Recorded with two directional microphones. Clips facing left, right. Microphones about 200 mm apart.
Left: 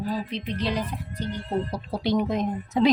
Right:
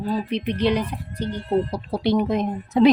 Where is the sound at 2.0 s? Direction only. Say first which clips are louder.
Right 3 dB; 65° right (ahead or behind).